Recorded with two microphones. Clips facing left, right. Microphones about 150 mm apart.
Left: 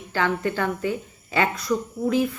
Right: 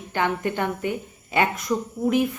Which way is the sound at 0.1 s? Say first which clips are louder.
Even; 20° right (ahead or behind).